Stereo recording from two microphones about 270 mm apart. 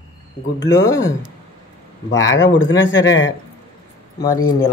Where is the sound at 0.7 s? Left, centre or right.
Centre.